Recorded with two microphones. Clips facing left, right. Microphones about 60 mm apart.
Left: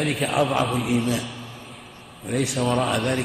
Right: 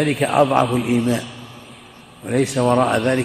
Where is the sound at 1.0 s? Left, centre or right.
Right.